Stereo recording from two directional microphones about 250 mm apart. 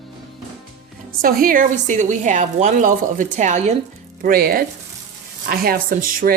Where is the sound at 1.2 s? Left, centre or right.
Right.